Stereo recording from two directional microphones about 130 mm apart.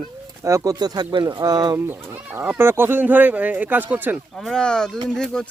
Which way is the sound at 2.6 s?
15° right (ahead or behind).